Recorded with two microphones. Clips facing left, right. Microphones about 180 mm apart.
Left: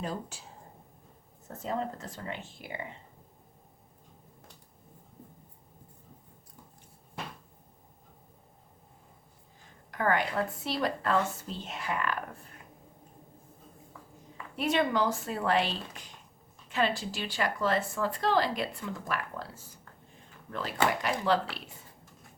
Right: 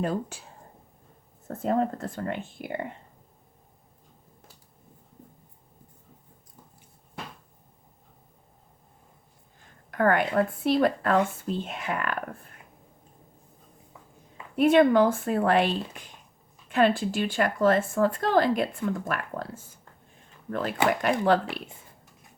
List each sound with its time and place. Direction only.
0.0 s speech: 60° right (ahead or behind)
1.5 s speech: 55° right (ahead or behind)
9.9 s a woman's voice: 55° right (ahead or behind)
14.5 s a woman's voice: 55° right (ahead or behind)